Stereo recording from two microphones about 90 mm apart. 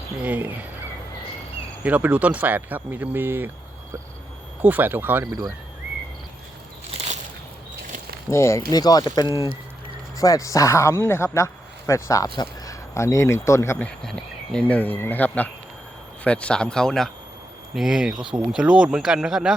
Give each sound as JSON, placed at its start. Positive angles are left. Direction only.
{"t": 0.2, "sound": "speech", "side_deg": -20}
{"t": 1.8, "sound": "speech", "side_deg": -15}
{"t": 4.6, "sound": "speech", "side_deg": -20}
{"t": 5.2, "sound": "speech", "side_deg": -40}
{"t": 8.3, "sound": "speech", "side_deg": 30}
{"t": 8.7, "sound": "speech", "side_deg": 45}
{"t": 10.2, "sound": "speech", "side_deg": 40}
{"t": 13.7, "sound": "speech", "side_deg": 10}
{"t": 17.7, "sound": "speech", "side_deg": -5}